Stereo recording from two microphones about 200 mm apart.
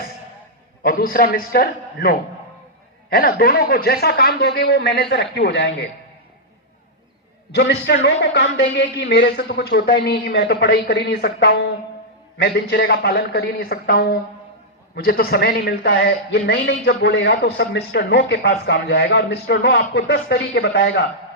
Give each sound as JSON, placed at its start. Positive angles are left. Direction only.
{"t": 0.8, "sound": "a man's voice", "side_deg": 45}
{"t": 7.5, "sound": "a man's voice", "side_deg": 55}